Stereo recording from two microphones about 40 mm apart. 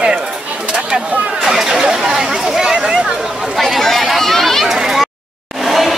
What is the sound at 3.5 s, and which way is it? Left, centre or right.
Chatter, centre.